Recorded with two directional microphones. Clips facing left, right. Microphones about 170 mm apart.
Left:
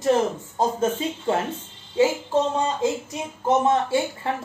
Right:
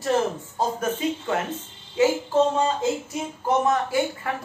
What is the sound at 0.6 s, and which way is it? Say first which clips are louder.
A woman's voice: left 3 dB; 25° left (ahead or behind).